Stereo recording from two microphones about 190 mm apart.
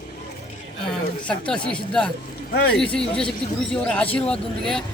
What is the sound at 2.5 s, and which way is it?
Speech, 55° left (ahead or behind).